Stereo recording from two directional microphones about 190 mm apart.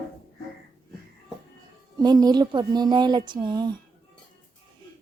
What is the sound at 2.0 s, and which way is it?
Speech, 20° right (ahead or behind).